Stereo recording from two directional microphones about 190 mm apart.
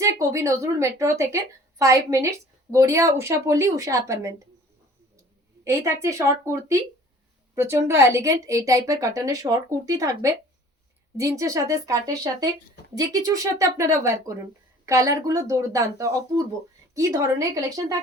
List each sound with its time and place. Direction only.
0.0 s a woman's voice: 15° right (ahead or behind)
5.6 s a woman's voice: 15° right (ahead or behind)